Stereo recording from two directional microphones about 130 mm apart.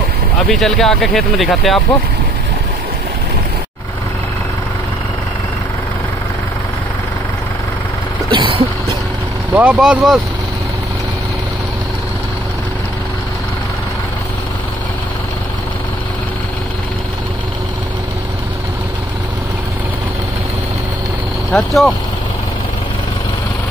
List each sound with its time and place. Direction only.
0.5 s speech: centre (ahead or behind)
8.3 s vehicle: 40° right (ahead or behind)
9.5 s speech: 10° right (ahead or behind)
21.5 s speech: 5° left (ahead or behind)